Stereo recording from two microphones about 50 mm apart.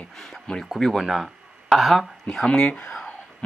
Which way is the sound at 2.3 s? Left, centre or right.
Centre.